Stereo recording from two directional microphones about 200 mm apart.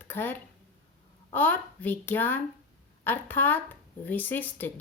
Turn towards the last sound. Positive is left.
turn(degrees=10)  # may be behind; listen again after turning